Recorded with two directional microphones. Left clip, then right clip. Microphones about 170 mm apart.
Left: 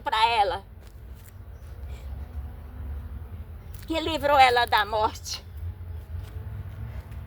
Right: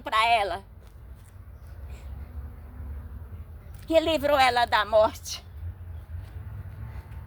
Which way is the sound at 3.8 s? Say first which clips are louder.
Right 3 dB; 30° right (ahead or behind).